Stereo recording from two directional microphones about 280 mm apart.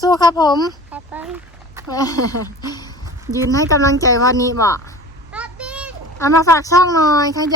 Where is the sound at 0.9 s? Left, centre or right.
Centre.